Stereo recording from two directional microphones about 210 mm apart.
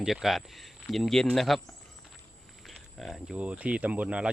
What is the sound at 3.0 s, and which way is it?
Speech, 5° right (ahead or behind).